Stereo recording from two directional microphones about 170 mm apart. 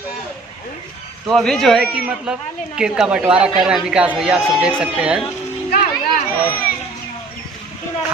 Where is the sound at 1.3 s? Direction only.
Centre (ahead or behind).